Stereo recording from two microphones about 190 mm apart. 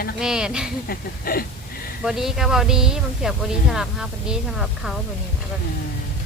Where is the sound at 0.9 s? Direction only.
50° left (ahead or behind).